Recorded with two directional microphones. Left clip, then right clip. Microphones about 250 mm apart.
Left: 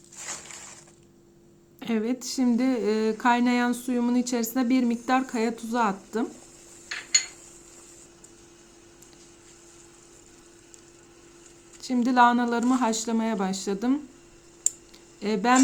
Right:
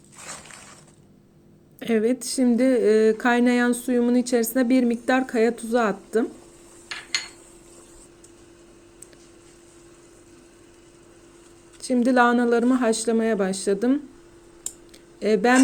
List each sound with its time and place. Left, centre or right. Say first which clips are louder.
1.8 s speech: right 7 dB; centre
11.8 s speech: right 1 dB; centre
15.2 s speech: right 4 dB; centre